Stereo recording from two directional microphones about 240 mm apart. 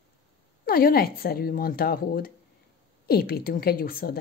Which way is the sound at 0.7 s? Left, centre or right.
Left.